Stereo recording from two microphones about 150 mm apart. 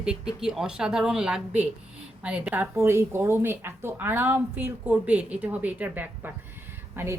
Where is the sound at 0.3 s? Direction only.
5° right (ahead or behind).